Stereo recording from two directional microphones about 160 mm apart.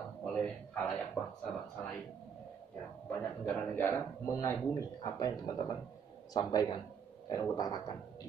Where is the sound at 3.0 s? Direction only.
10° left (ahead or behind).